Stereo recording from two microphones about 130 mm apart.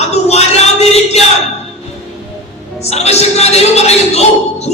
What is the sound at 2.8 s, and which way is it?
Music, 55° left (ahead or behind).